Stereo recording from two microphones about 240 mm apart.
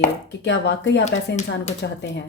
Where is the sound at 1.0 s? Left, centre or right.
Left.